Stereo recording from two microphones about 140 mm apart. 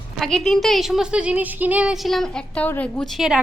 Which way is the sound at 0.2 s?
5° left (ahead or behind).